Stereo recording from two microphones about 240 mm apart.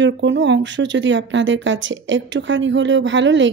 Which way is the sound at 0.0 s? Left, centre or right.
Right.